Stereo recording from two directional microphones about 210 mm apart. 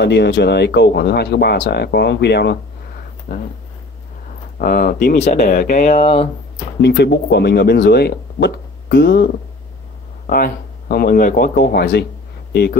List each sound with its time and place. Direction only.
0.0 s speech: 55° left (ahead or behind)
3.3 s speech: 40° left (ahead or behind)
4.6 s speech: 45° left (ahead or behind)
6.8 s speech: 50° left (ahead or behind)